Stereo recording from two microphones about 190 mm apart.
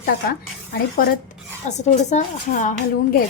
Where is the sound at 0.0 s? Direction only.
50° left (ahead or behind).